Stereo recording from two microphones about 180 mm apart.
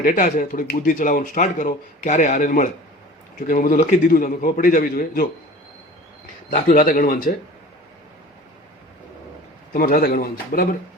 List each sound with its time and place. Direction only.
0.0 s speech: 50° left (ahead or behind)
6.5 s speech: 50° left (ahead or behind)
9.7 s speech: 55° left (ahead or behind)